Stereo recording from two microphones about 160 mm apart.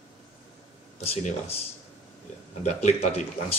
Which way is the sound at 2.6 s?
45° left (ahead or behind).